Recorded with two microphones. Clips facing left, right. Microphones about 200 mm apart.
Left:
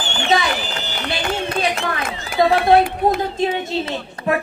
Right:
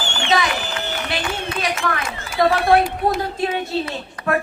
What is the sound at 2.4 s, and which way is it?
Speech, 25° left (ahead or behind).